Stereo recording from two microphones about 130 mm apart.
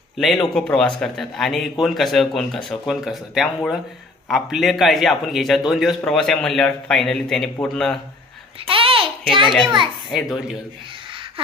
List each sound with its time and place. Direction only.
0.2 s a man's voice: centre (ahead or behind)
8.5 s a sound: 45° right (ahead or behind)
9.3 s a child's voice: 40° right (ahead or behind)
10.1 s a man's voice: centre (ahead or behind)